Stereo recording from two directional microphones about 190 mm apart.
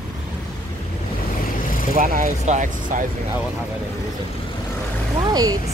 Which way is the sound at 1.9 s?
40° right (ahead or behind).